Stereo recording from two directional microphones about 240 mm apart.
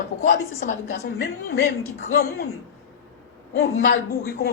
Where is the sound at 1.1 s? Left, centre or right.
Left.